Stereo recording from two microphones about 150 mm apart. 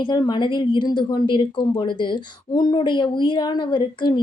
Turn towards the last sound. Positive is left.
turn(degrees=30)  # may be behind; listen again after turning